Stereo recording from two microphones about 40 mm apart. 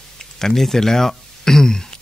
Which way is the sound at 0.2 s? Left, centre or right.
Centre.